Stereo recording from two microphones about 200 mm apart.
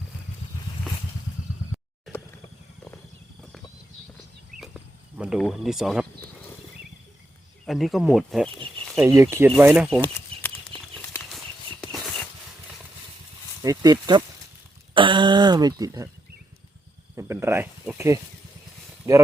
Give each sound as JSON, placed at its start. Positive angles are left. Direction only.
{"t": 4.6, "sound": "a sound", "side_deg": -5}
{"t": 7.6, "sound": "speech", "side_deg": 0}
{"t": 9.0, "sound": "speech", "side_deg": -15}
{"t": 10.0, "sound": "bird flight", "side_deg": 10}
{"t": 13.6, "sound": "speech", "side_deg": -20}
{"t": 17.2, "sound": "speech", "side_deg": -15}